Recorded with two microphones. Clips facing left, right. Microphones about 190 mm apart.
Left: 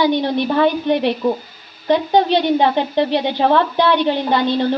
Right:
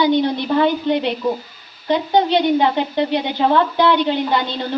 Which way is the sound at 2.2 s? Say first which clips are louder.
Even; 20° right (ahead or behind).